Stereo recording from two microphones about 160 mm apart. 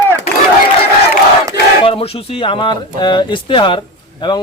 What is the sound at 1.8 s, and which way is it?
A man's voice, 35° left (ahead or behind).